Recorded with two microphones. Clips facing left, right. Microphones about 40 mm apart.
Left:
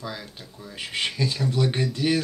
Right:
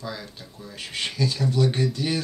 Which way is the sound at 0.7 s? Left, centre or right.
Left.